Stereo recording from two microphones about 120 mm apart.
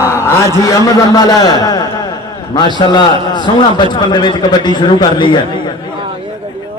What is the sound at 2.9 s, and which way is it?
A man's voice, 40° left (ahead or behind).